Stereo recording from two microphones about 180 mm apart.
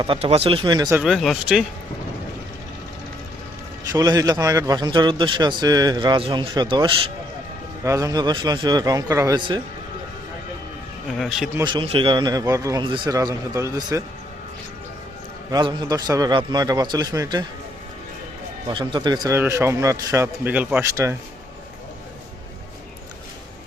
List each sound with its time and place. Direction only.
0.0 s a man's voice: 30° right (ahead or behind)
0.9 s speech: centre (ahead or behind)
3.9 s a man's voice: 20° right (ahead or behind)
11.1 s speech: centre (ahead or behind)
11.5 s a man's voice: 25° right (ahead or behind)
15.4 s a man's voice: 20° right (ahead or behind)
18.7 s a man's voice: 25° right (ahead or behind)